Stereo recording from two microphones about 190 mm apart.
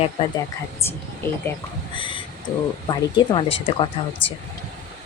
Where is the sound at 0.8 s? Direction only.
10° left (ahead or behind).